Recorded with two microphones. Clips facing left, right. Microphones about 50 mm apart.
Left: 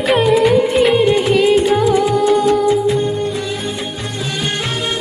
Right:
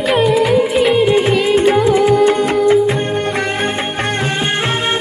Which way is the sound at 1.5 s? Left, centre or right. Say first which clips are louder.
Right 1 dB; right.